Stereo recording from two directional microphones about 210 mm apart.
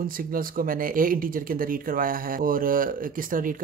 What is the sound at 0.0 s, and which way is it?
Speech, 40° right (ahead or behind).